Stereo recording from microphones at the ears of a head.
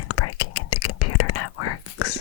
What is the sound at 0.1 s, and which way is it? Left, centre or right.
Whispering, left.